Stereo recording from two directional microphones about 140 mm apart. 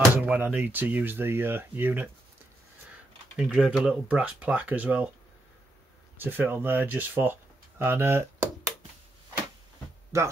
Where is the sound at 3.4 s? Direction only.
5° right (ahead or behind).